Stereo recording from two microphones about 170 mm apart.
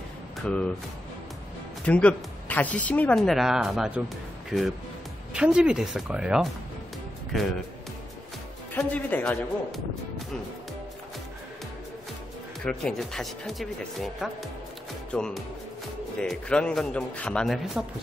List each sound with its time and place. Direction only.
0.4 s speech: 5° left (ahead or behind)
1.9 s speech: 10° left (ahead or behind)
8.7 s speech: 10° left (ahead or behind)
12.6 s speech: 5° left (ahead or behind)